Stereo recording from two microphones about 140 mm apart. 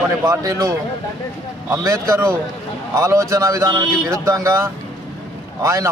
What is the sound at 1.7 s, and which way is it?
Speech, 20° right (ahead or behind).